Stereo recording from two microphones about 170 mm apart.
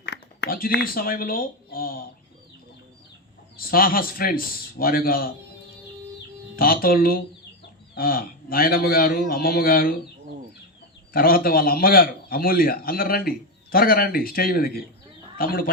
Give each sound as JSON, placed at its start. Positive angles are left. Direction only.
{"t": 0.0, "sound": "speech", "side_deg": 85}
{"t": 3.6, "sound": "a man's voice", "side_deg": 60}
{"t": 6.6, "sound": "a man's voice", "side_deg": 60}
{"t": 11.1, "sound": "a man's voice", "side_deg": 60}